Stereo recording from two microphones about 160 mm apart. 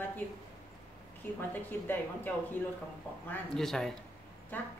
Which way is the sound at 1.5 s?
10° left (ahead or behind).